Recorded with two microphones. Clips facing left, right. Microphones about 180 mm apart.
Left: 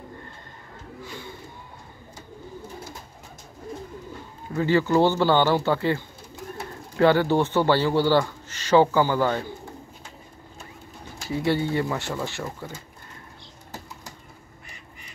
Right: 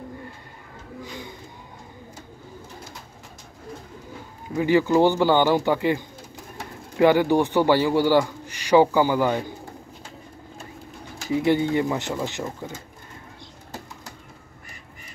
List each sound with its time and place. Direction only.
1.0 s a sound: 15° right (ahead or behind)
4.6 s speech: 15° right (ahead or behind)
11.2 s speech: 15° right (ahead or behind)